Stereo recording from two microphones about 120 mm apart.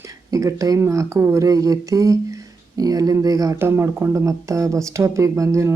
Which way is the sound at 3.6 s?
20° right (ahead or behind).